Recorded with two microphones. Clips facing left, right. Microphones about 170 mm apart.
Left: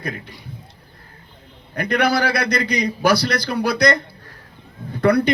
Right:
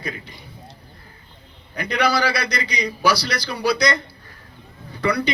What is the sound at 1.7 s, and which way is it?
A man's voice, 55° left (ahead or behind).